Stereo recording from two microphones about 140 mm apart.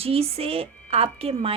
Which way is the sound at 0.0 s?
45° right (ahead or behind).